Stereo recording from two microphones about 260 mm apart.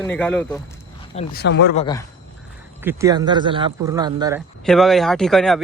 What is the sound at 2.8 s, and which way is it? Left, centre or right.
Speech, centre.